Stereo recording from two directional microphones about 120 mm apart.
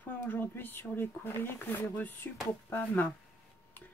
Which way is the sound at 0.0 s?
15° left (ahead or behind).